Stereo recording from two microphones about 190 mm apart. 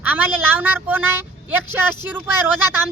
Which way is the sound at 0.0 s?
10° right (ahead or behind).